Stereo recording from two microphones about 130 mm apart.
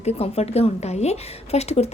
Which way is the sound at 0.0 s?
55° left (ahead or behind).